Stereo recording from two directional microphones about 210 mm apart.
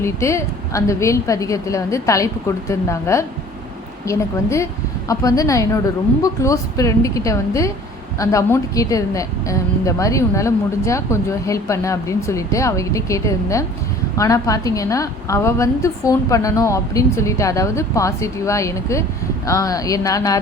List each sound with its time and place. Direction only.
0.0 s a woman's voice: 15° left (ahead or behind)